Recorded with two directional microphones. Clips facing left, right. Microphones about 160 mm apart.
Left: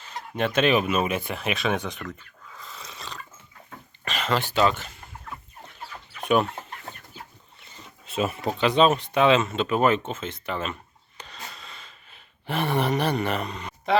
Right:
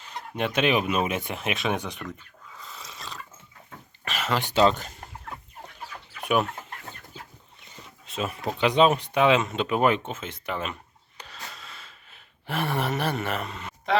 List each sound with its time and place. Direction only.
0.0 s speech: 15° right (ahead or behind)
4.0 s a sound: 5° right (ahead or behind)
4.7 s speech: 40° right (ahead or behind)
8.0 s speech: 5° left (ahead or behind)
8.5 s speech: 15° right (ahead or behind)
11.2 s a sound: 5° right (ahead or behind)